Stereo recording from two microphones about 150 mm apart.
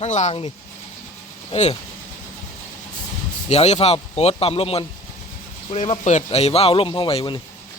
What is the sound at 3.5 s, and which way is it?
Speech, 45° left (ahead or behind).